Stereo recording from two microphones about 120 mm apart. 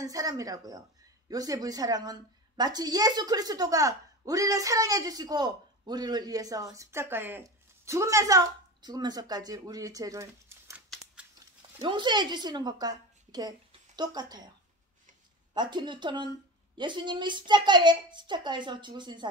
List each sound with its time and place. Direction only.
0.0 s a child's voice: 30° right (ahead or behind)
11.8 s a woman's voice: 40° right (ahead or behind)
15.5 s a child's voice: 40° right (ahead or behind)